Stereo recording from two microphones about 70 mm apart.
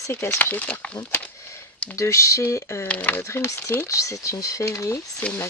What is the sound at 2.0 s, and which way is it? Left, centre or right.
Speech, left.